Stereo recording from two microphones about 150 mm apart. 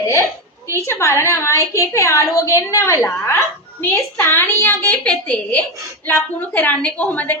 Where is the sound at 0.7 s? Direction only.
20° left (ahead or behind).